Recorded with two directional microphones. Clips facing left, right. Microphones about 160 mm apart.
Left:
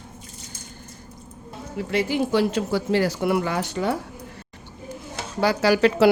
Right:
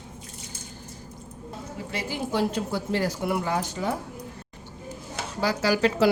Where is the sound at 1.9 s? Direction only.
70° left (ahead or behind).